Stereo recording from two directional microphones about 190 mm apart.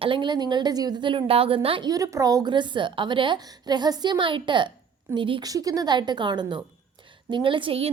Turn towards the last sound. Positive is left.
turn(degrees=-30)  # may be behind; listen again after turning